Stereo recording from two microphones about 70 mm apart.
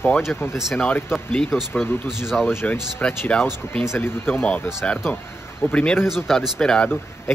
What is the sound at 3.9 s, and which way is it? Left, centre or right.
Speech, left.